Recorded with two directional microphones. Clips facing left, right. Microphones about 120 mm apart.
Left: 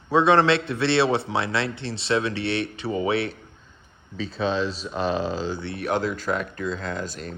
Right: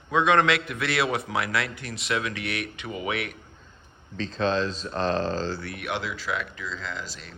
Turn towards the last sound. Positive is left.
turn(degrees=45)  # may be behind; listen again after turning